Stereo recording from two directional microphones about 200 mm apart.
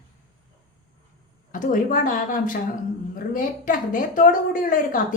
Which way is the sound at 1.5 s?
40° left (ahead or behind).